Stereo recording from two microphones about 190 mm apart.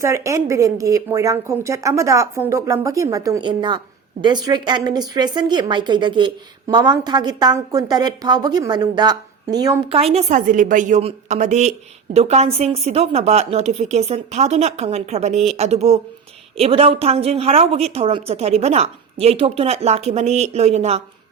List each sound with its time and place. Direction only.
0.0 s a woman's voice: 15° right (ahead or behind)
9.9 s a woman's voice: 30° right (ahead or behind)